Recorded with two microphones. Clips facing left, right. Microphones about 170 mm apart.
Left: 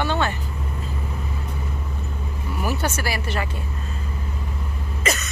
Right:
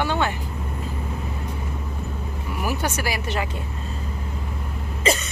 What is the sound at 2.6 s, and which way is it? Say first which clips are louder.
Speech: even; 15° right (ahead or behind).